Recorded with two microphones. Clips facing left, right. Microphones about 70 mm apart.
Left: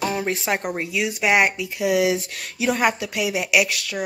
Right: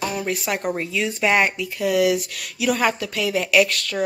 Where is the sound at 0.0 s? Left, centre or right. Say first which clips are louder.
Left 1 dB; left.